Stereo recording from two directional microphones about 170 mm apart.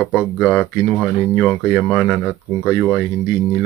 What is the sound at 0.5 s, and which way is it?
Speech, 10° left (ahead or behind).